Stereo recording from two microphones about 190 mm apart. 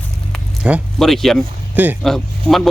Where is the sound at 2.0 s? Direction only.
Centre (ahead or behind).